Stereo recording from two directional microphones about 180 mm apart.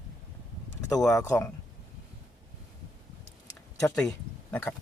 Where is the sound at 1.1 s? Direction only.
15° left (ahead or behind).